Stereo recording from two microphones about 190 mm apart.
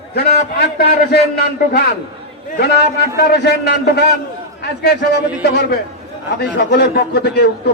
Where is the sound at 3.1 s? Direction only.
60° left (ahead or behind).